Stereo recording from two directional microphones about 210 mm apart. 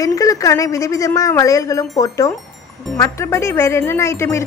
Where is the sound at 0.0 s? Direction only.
15° left (ahead or behind).